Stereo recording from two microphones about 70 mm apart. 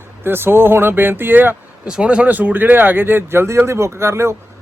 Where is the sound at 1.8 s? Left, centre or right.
Centre; by 4.3 s right.